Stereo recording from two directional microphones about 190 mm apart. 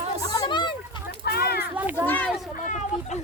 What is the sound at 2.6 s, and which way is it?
Speech, 40° left (ahead or behind).